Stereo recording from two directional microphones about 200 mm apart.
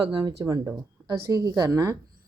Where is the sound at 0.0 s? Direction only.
20° right (ahead or behind).